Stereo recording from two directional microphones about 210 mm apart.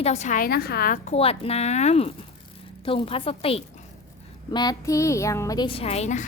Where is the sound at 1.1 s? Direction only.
25° left (ahead or behind).